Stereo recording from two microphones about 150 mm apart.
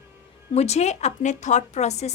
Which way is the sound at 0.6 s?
45° left (ahead or behind).